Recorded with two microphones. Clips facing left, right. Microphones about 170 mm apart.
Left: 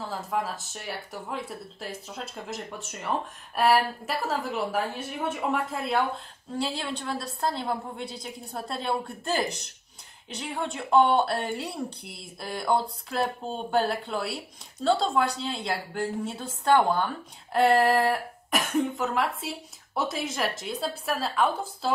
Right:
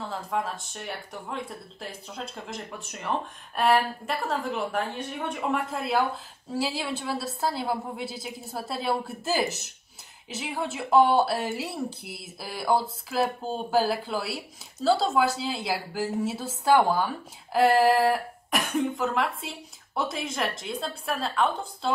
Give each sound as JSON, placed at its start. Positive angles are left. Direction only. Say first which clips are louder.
{"t": 0.0, "sound": "a woman's voice", "louder": "even", "side_deg": 0}